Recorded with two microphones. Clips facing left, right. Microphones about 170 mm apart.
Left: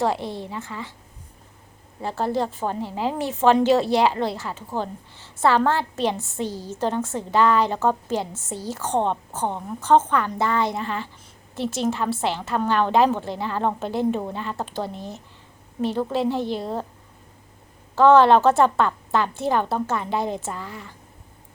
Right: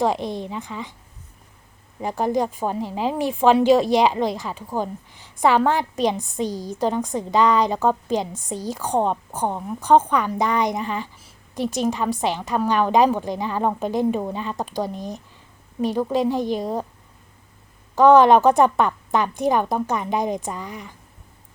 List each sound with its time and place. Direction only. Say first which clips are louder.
0.0 s a woman's voice: right 2 dB; 15° right (ahead or behind)
2.0 s a woman's voice: right 2 dB; 15° right (ahead or behind)
17.9 s a woman's voice: right 1 dB; 15° right (ahead or behind)